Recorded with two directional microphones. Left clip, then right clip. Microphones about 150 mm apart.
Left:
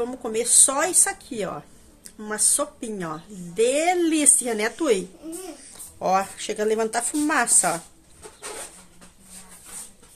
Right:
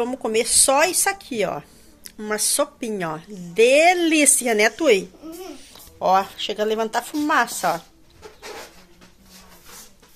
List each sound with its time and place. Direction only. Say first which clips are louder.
0.0 s a woman's voice: right 4 dB; 35° right (ahead or behind)
4.7 s speech: right 5 dB; 15° right (ahead or behind)
5.6 s a woman's voice: right 5 dB; 10° left (ahead or behind)